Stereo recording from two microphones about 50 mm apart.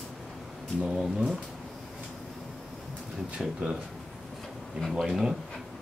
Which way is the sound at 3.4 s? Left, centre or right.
Centre.